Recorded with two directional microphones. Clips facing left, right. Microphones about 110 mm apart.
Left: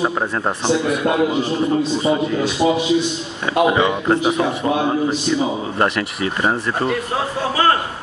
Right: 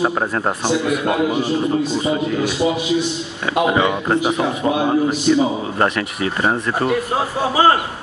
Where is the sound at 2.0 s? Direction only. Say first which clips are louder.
Left 1 dB; 30° left (ahead or behind).